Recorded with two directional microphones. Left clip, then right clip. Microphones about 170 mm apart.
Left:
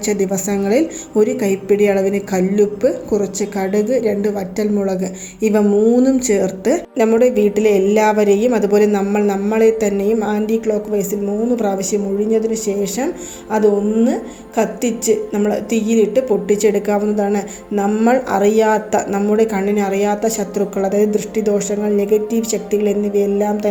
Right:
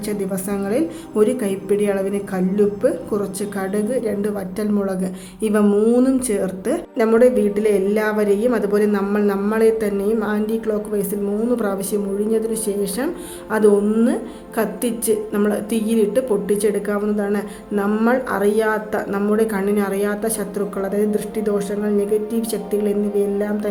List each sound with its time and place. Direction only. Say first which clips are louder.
0.1 s a woman's voice: left 6 dB; 20° left (ahead or behind)
5.7 s speech: left 3 dB; centre (ahead or behind)
6.0 s a woman's voice: left 4 dB; 15° left (ahead or behind)
17.8 s speech: left 4 dB; 5° left (ahead or behind)
18.1 s a woman's voice: left 5 dB; 15° left (ahead or behind)